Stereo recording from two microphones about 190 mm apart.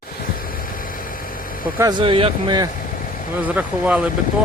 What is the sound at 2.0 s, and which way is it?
Speech, 30° right (ahead or behind).